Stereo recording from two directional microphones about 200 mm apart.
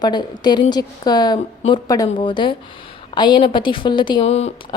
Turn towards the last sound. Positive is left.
turn(degrees=30)  # may be behind; listen again after turning